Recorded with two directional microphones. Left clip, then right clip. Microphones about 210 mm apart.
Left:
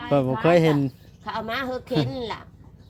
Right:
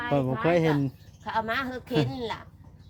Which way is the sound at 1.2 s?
25° right (ahead or behind).